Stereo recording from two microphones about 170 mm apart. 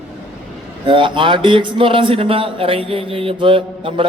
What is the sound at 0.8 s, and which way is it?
Speech, 30° right (ahead or behind).